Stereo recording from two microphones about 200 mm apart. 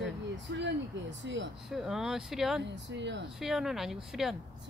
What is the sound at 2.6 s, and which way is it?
Speech, 60° right (ahead or behind).